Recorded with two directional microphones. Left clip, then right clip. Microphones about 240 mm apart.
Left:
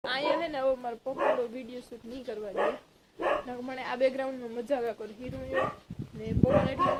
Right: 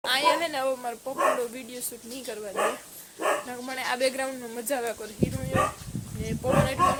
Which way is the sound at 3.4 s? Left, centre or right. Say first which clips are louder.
Right 5 dB; centre.